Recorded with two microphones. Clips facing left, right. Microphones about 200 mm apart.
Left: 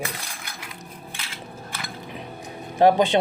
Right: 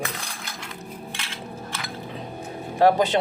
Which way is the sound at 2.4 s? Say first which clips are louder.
Left 1 dB; 20° left (ahead or behind).